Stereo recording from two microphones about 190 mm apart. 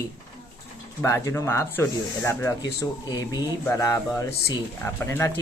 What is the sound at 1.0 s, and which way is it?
Speech, 15° left (ahead or behind).